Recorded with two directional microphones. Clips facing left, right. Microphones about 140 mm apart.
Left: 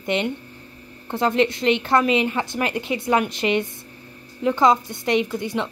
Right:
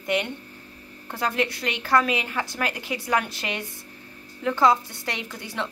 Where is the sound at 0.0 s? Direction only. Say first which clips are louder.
Left 3 dB; 25° left (ahead or behind).